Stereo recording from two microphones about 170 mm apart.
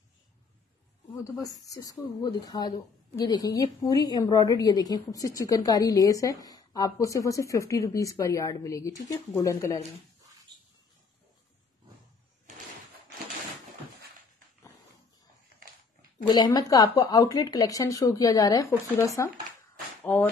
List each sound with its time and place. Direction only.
1.4 s a woman's voice: 20° left (ahead or behind)
16.3 s a woman's voice: 25° left (ahead or behind)